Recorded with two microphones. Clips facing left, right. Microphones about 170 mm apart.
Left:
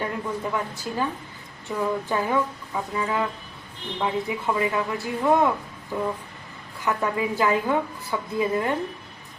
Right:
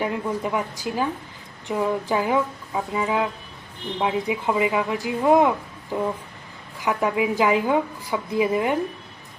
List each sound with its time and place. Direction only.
0.0 s a woman's voice: 10° right (ahead or behind)